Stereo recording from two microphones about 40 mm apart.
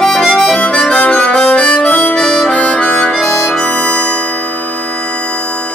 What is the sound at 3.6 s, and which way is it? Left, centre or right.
Music, left.